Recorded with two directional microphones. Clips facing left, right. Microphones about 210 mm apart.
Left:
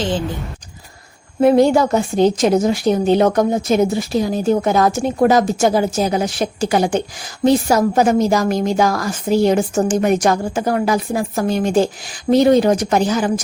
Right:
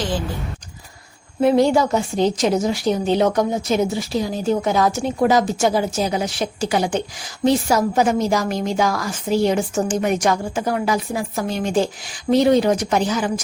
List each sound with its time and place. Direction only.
1.4 s a woman's voice: 50° left (ahead or behind)